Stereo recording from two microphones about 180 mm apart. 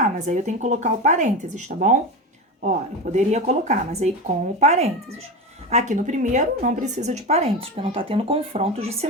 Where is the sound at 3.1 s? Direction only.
40° right (ahead or behind).